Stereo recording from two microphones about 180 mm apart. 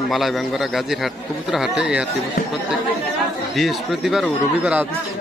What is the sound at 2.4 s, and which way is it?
Speech, 55° left (ahead or behind).